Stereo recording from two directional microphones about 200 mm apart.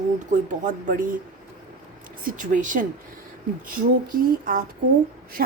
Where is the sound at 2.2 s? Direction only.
40° right (ahead or behind).